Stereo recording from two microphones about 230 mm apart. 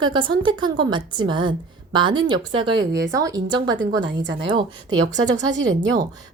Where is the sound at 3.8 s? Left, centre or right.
Right.